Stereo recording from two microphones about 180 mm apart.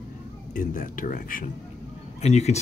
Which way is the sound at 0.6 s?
50° left (ahead or behind).